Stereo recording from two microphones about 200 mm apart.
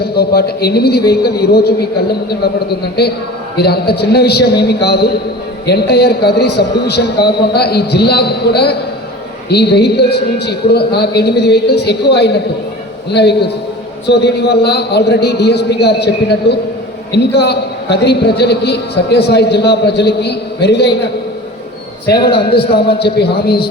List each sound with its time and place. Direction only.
0.0 s a man's voice: 50° left (ahead or behind)